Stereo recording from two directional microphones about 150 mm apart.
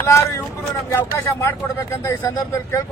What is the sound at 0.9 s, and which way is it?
A man's voice, 20° left (ahead or behind).